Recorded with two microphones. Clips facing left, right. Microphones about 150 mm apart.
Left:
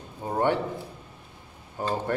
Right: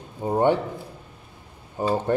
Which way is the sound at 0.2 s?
15° right (ahead or behind).